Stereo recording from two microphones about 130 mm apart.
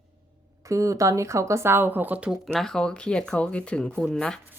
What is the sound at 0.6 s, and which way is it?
Speech, 25° right (ahead or behind).